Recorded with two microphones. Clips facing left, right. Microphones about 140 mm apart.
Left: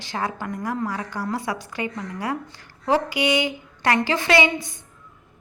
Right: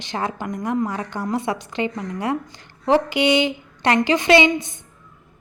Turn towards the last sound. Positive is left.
turn(degrees=-20)  # may be behind; listen again after turning